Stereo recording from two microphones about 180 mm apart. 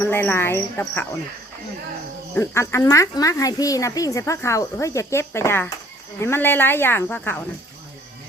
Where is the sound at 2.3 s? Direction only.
15° left (ahead or behind).